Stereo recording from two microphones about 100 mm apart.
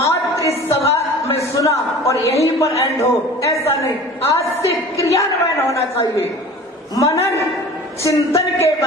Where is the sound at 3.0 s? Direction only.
30° left (ahead or behind).